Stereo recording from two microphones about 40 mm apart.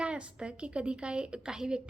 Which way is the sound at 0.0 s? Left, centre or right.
Right.